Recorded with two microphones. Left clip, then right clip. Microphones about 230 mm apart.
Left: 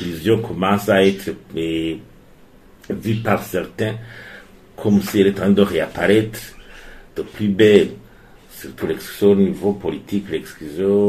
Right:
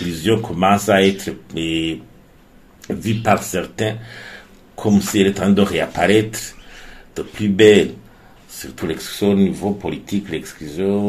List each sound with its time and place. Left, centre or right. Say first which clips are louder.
0.2 s speech: right 1 dB; right
3.0 s speech: right 3 dB; right